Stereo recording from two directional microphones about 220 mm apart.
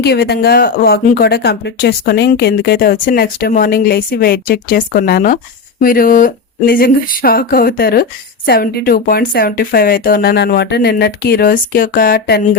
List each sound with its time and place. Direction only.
0.0 s speech: 45° left (ahead or behind)